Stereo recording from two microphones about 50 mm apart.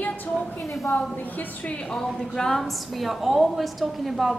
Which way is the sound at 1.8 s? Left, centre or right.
Centre.